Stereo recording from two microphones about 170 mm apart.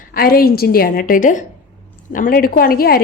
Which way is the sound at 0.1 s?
60° left (ahead or behind).